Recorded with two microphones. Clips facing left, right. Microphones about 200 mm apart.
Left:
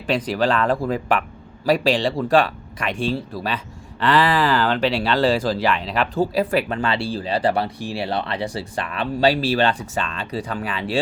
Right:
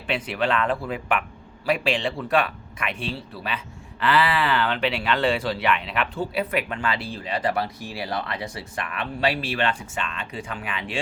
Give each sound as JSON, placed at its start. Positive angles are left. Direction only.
{"t": 0.3, "sound": "speech", "side_deg": 35}